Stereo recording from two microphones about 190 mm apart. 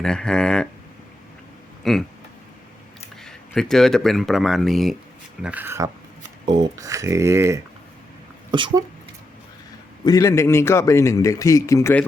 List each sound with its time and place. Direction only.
0.0 s speech: 5° left (ahead or behind)
1.8 s speech: centre (ahead or behind)
3.2 s speech: 5° left (ahead or behind); by 8.8 s 25° right (ahead or behind)
10.0 s a man's voice: 20° left (ahead or behind)